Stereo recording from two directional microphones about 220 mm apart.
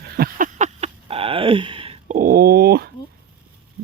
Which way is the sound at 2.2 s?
40° right (ahead or behind).